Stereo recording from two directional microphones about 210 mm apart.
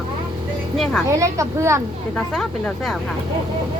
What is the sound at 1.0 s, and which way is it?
Speech, 15° right (ahead or behind).